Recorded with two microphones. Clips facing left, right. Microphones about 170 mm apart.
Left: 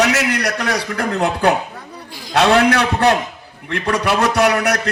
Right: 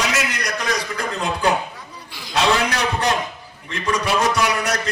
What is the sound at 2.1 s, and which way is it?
A man's voice, 45° left (ahead or behind).